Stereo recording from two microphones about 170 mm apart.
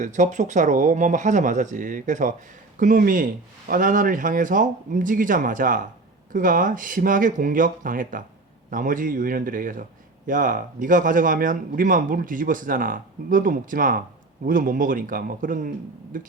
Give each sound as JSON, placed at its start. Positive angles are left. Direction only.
{"t": 0.0, "sound": "a man's voice", "side_deg": -45}